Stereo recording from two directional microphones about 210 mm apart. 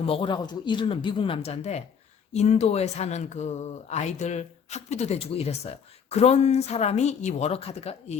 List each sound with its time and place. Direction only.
0.0 s speech: 25° left (ahead or behind)